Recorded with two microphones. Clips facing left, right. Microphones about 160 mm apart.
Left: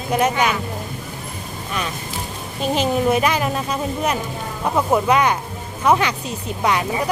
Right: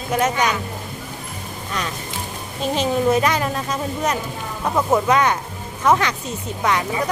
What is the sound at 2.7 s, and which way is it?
Speech, 10° left (ahead or behind).